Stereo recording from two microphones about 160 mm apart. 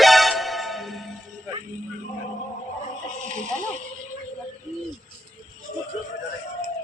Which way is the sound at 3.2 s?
50° right (ahead or behind).